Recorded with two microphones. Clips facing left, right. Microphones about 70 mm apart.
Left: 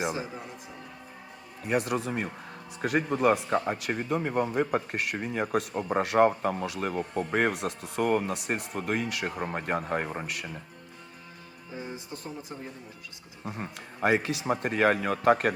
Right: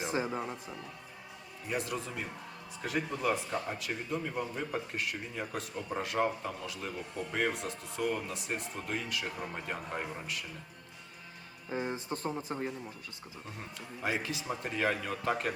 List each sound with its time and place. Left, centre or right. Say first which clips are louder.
0.1 s speech: right 1 dB; right
1.6 s speech: left 8 dB; left
11.7 s speech: right 4 dB; right
13.4 s speech: left 9 dB; left